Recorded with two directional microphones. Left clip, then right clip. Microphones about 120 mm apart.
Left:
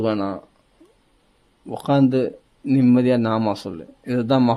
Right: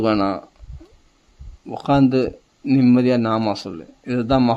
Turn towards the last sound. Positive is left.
turn(degrees=5)  # may be behind; listen again after turning